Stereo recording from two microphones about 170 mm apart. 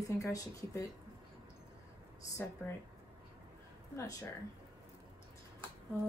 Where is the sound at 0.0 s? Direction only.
20° left (ahead or behind).